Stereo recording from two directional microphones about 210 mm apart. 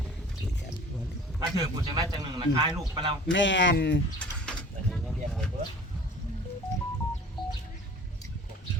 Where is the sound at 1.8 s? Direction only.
20° right (ahead or behind).